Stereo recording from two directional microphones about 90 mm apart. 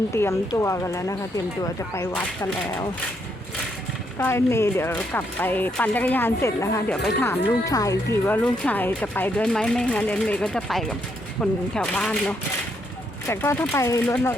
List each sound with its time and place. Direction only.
0.1 s speech: 30° left (ahead or behind)
4.2 s speech: 30° left (ahead or behind)
4.9 s speech: 20° left (ahead or behind)
6.8 s speech: 5° left (ahead or behind)
7.2 s speech: 35° left (ahead or behind)
8.2 s speech: 15° left (ahead or behind)
13.2 s speech: 30° left (ahead or behind)
13.7 s speech: 35° left (ahead or behind)